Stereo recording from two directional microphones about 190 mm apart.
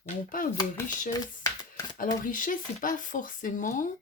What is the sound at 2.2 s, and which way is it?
Speech, 45° left (ahead or behind).